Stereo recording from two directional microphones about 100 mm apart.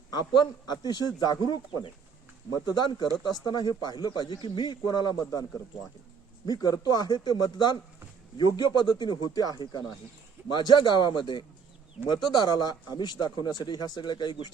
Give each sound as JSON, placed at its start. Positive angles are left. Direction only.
{"t": 0.1, "sound": "speech", "side_deg": 45}
{"t": 2.6, "sound": "speech", "side_deg": 45}